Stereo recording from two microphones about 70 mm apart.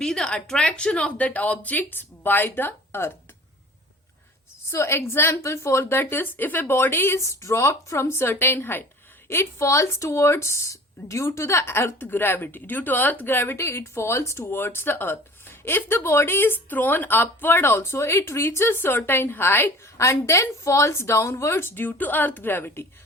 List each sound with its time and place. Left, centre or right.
0.0 s speech: centre; by 3.1 s left
4.7 s speech: left
20.0 s speech: left